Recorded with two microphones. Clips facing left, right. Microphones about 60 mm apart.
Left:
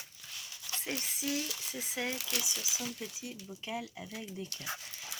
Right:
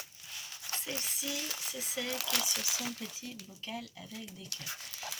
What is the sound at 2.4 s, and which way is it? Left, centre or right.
Speech, right.